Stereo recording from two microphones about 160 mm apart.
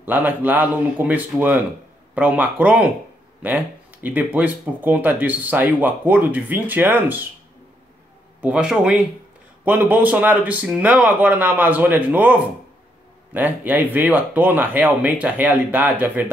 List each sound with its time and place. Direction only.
0.0 s speech: 10° right (ahead or behind)
8.4 s a man's voice: 5° right (ahead or behind)